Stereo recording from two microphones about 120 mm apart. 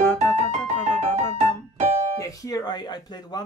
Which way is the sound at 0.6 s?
75° right (ahead or behind).